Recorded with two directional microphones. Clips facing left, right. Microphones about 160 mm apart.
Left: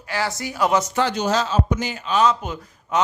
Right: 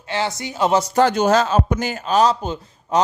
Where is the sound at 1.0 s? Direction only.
50° right (ahead or behind).